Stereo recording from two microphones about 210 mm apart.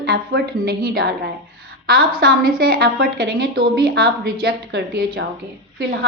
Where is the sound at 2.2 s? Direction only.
45° right (ahead or behind).